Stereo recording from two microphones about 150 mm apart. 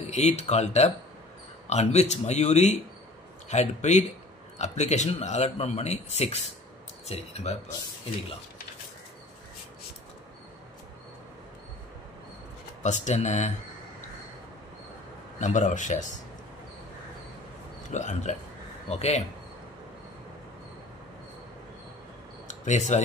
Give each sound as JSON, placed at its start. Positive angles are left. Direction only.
{"t": 0.0, "sound": "speech", "side_deg": 50}
{"t": 12.8, "sound": "speech", "side_deg": 55}
{"t": 15.4, "sound": "a man's voice", "side_deg": 55}
{"t": 17.8, "sound": "speech", "side_deg": 55}
{"t": 22.5, "sound": "a sound", "side_deg": 50}